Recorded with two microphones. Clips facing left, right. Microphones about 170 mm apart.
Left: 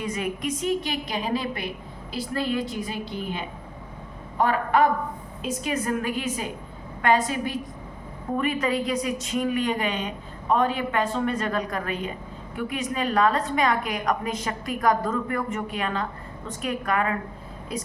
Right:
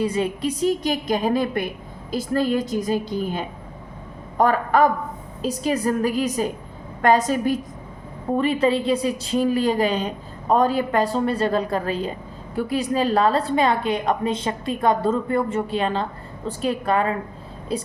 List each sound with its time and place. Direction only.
0.0 s a woman's voice: 30° right (ahead or behind)
8.4 s a woman's voice: 30° right (ahead or behind)